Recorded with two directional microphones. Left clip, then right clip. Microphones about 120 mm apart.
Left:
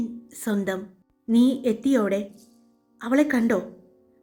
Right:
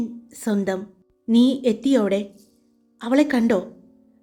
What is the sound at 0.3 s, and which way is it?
A woman's voice, 25° right (ahead or behind).